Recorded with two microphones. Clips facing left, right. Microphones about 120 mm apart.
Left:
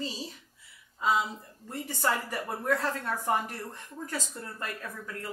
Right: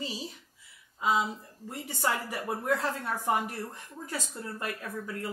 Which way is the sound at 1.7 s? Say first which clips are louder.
Left 1 dB; 15° right (ahead or behind).